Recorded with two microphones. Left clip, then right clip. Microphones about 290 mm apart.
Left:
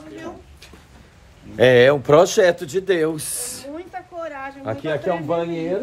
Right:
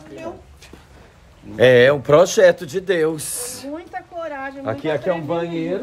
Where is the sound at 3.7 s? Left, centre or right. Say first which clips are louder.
Right 2 dB; right.